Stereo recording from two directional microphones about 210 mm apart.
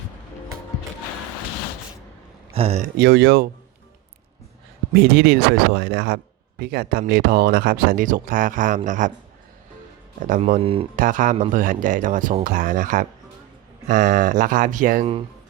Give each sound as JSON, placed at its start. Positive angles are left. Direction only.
{"t": 2.5, "sound": "speech", "side_deg": -30}
{"t": 3.0, "sound": "speech", "side_deg": -55}
{"t": 4.9, "sound": "speech", "side_deg": -50}
{"t": 10.2, "sound": "speech", "side_deg": -40}
{"t": 10.9, "sound": "speech", "side_deg": -40}